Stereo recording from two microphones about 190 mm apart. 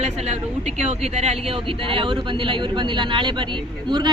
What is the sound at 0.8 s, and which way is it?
A man's voice, 35° right (ahead or behind).